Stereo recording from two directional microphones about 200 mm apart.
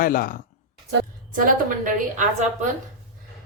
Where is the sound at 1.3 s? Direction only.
40° right (ahead or behind).